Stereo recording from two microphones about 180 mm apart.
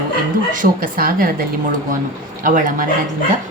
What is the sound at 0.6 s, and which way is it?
A woman's voice, 55° right (ahead or behind).